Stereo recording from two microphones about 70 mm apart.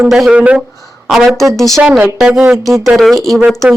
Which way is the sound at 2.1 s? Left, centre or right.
Centre.